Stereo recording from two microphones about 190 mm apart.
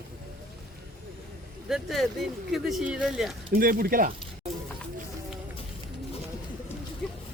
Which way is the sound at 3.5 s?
50° right (ahead or behind).